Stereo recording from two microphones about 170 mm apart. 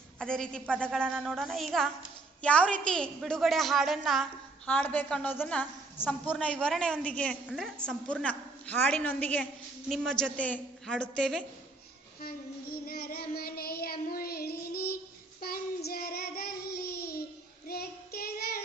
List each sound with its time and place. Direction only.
0.2 s a woman's voice: 5° left (ahead or behind)
7.4 s a woman's voice: 5° right (ahead or behind)
7.8 s a woman's voice: 5° left (ahead or behind)
12.2 s child singing: 60° left (ahead or behind)